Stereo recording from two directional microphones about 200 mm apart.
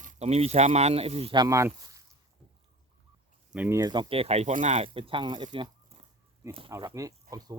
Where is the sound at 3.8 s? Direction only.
20° right (ahead or behind).